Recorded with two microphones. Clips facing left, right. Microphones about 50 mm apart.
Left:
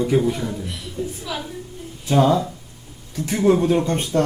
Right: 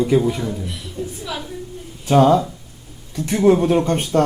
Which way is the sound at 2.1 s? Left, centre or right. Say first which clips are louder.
Right 4 dB; right.